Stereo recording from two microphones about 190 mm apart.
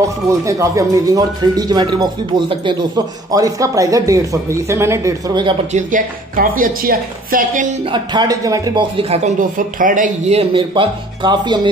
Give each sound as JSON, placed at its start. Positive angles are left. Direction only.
{"t": 0.5, "sound": "speech", "side_deg": -15}
{"t": 5.7, "sound": "a woman's voice", "side_deg": -40}
{"t": 7.9, "sound": "speech", "side_deg": -25}